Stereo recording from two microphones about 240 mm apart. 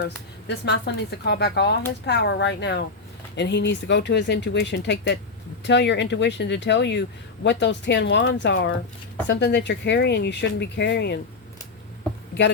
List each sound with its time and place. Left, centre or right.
0.4 s speech: left